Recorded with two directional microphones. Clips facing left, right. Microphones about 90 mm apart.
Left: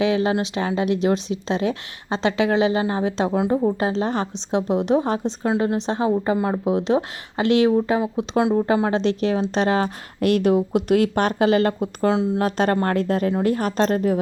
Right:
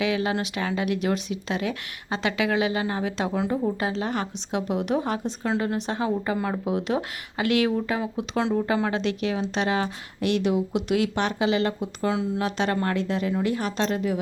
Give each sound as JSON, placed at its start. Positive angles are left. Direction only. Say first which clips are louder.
{"t": 0.0, "sound": "a woman's voice", "louder": "left 5 dB", "side_deg": 30}